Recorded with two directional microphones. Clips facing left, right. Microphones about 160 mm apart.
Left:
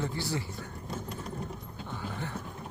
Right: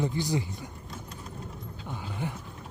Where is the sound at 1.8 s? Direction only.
15° right (ahead or behind).